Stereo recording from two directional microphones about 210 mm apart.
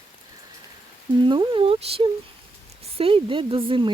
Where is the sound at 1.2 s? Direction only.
20° right (ahead or behind).